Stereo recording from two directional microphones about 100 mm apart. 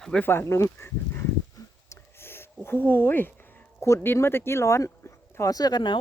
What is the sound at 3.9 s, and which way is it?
Speech, 20° left (ahead or behind).